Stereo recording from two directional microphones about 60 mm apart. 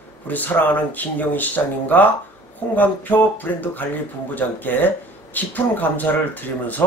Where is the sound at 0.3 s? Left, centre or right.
Left.